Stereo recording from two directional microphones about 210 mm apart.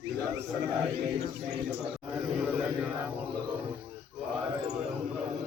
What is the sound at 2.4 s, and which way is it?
Mantra, 5° right (ahead or behind).